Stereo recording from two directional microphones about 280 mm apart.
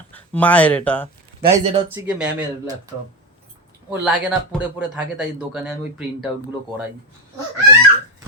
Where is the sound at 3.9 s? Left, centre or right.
Centre.